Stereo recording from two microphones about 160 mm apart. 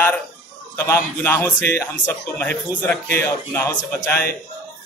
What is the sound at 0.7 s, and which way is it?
Speech, 15° left (ahead or behind).